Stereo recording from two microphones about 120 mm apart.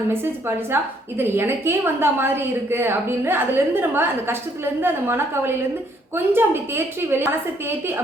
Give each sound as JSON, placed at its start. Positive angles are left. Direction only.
{"t": 0.1, "sound": "a woman's voice", "side_deg": -20}